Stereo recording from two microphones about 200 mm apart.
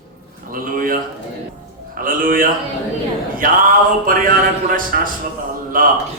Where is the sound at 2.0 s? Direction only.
45° right (ahead or behind).